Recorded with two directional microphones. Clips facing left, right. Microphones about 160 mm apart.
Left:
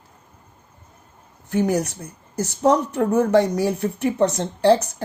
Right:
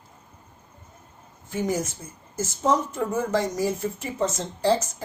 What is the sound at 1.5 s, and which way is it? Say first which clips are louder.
Speech: left 6 dB; 70° left (ahead or behind).